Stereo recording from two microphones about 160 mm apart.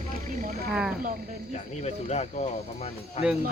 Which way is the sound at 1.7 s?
45° left (ahead or behind).